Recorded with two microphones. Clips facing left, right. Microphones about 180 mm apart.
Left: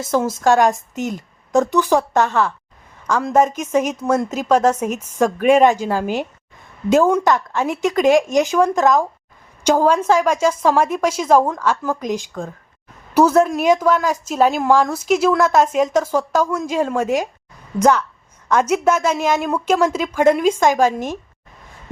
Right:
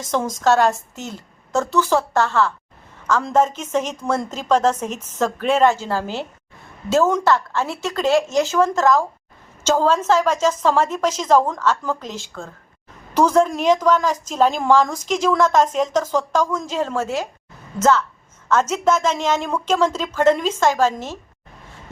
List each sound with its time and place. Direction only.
0.0 s a woman's voice: 10° left (ahead or behind)